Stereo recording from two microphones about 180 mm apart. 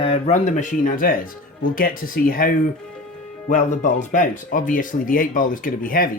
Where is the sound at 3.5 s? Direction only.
45° left (ahead or behind).